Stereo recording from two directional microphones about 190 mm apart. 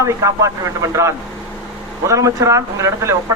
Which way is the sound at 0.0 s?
15° right (ahead or behind).